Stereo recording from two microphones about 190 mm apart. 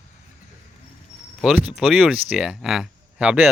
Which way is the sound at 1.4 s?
5° right (ahead or behind).